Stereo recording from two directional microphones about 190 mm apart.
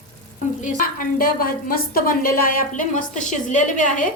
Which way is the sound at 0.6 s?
45° left (ahead or behind).